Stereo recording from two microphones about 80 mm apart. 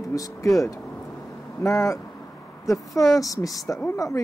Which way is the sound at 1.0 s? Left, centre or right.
Left.